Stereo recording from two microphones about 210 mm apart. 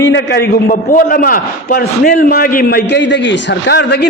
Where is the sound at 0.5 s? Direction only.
40° left (ahead or behind).